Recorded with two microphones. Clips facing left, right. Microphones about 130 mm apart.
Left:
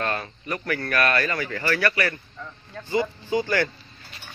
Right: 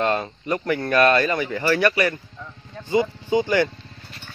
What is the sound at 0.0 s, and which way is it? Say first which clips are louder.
Speech: right 6 dB; 20° right (ahead or behind).